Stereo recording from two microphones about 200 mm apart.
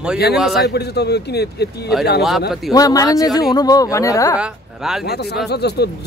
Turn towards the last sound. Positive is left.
turn(degrees=55)  # may be behind; listen again after turning